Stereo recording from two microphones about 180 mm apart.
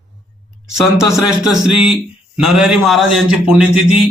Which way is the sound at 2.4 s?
5° right (ahead or behind).